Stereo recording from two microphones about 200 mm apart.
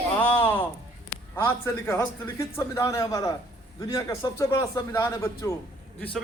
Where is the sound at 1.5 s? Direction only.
15° left (ahead or behind).